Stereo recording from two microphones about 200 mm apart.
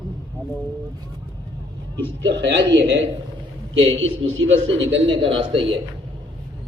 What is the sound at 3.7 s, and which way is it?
A man's voice, 75° right (ahead or behind).